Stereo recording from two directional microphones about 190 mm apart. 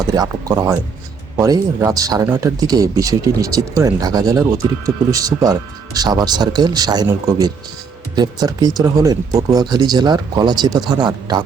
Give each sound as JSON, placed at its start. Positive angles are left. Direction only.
{"t": 0.0, "sound": "speech", "side_deg": -20}